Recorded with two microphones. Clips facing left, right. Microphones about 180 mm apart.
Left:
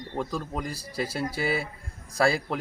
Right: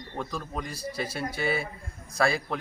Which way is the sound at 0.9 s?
30° left (ahead or behind).